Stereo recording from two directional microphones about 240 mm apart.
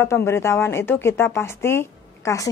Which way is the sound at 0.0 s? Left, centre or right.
Centre.